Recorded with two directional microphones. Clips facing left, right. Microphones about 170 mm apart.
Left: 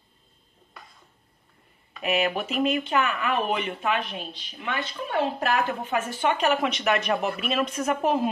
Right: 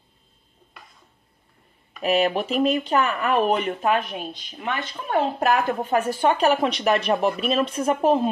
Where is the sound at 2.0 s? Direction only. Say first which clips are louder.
Right 4 dB; 35° right (ahead or behind).